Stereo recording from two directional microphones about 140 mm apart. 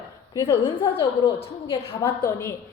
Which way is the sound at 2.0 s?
15° left (ahead or behind).